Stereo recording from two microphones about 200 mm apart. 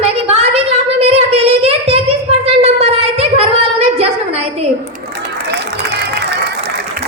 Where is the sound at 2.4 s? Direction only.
30° right (ahead or behind).